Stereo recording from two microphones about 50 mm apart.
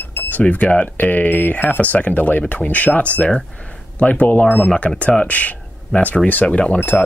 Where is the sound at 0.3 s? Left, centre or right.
Left.